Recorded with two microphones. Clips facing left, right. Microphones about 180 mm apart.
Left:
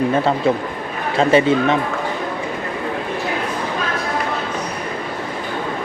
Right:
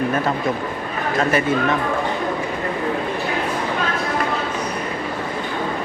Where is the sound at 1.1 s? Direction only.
25° left (ahead or behind).